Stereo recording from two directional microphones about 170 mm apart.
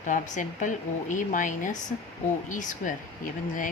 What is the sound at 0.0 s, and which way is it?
Speech, 50° left (ahead or behind).